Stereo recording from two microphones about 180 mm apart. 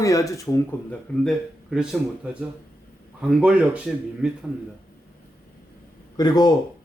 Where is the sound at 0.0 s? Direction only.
15° left (ahead or behind).